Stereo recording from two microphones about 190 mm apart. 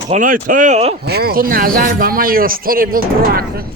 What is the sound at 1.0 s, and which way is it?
Speech, 55° right (ahead or behind).